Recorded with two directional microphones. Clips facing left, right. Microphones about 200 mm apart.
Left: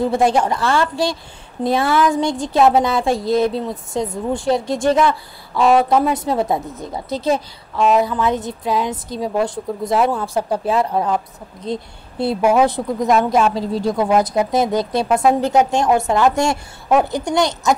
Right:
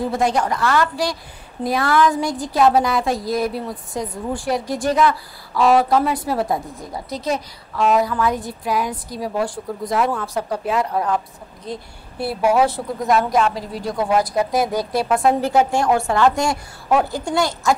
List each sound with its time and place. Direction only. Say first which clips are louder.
0.0 s a woman's voice: left 4 dB; 25° left (ahead or behind)